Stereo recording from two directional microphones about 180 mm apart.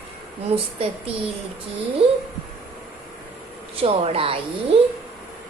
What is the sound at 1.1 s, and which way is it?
Speech, 35° right (ahead or behind).